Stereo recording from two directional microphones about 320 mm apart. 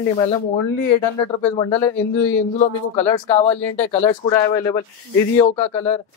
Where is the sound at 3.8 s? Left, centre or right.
Centre.